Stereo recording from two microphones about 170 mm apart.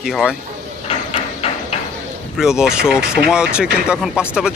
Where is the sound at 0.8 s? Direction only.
35° left (ahead or behind).